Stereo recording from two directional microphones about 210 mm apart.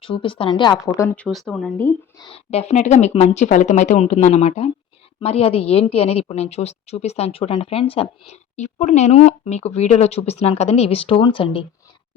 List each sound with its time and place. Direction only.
0.0 s a woman's voice: 25° left (ahead or behind)
0.9 s speech: 10° left (ahead or behind)
2.1 s a woman's voice: 25° left (ahead or behind)